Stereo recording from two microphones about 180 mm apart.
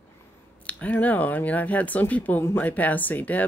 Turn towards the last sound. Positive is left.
turn(degrees=10)  # may be behind; listen again after turning